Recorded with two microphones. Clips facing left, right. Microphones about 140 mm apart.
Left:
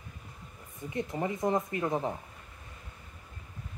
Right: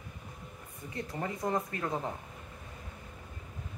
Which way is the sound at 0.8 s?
20° left (ahead or behind).